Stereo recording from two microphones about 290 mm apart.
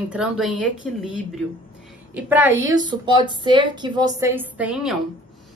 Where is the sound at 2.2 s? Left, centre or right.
Centre.